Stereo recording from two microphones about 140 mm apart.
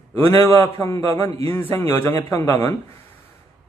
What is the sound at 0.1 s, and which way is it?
A man's voice, 15° left (ahead or behind).